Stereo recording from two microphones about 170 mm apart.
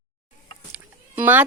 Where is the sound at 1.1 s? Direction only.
10° right (ahead or behind).